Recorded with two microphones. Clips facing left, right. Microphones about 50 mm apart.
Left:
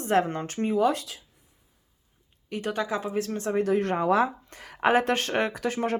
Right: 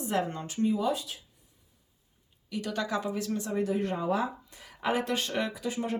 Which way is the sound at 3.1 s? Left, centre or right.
Left.